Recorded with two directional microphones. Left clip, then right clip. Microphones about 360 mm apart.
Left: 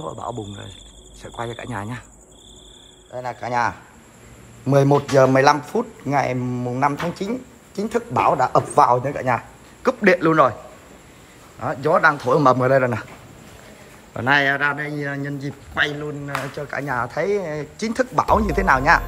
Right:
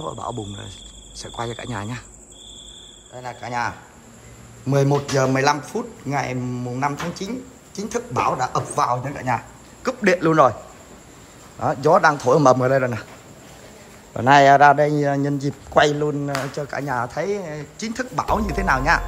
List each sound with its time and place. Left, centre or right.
0.0 s speech: centre
3.2 s speech: centre
7.2 s speech: right
7.8 s a man's voice: centre
11.6 s a man's voice: centre
14.1 s a man's voice: centre